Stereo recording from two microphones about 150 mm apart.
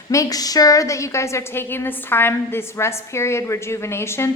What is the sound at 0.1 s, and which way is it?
A woman's voice, 25° left (ahead or behind).